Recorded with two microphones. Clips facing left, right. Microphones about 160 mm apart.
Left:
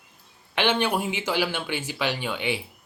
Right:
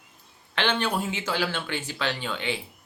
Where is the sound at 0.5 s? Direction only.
10° left (ahead or behind).